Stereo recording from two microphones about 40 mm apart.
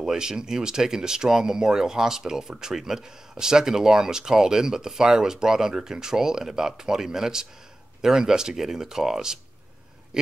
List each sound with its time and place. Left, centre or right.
0.0 s speech: centre